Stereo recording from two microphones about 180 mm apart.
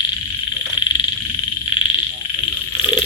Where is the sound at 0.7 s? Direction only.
25° left (ahead or behind).